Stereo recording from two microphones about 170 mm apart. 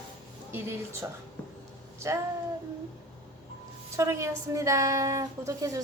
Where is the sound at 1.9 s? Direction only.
15° right (ahead or behind).